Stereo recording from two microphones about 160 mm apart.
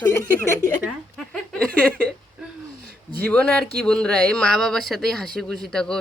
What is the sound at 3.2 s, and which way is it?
A man's voice, 5° left (ahead or behind).